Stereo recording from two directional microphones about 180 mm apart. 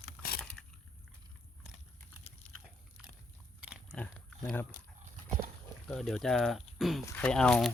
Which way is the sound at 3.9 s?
10° left (ahead or behind).